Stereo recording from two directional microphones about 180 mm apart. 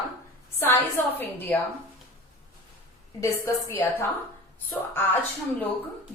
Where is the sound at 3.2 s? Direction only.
15° left (ahead or behind).